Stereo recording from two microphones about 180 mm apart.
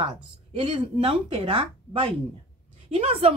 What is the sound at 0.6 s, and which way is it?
A woman's voice, 30° right (ahead or behind).